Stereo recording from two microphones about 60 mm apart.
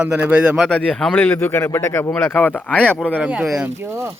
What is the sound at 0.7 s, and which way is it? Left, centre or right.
Speech, centre.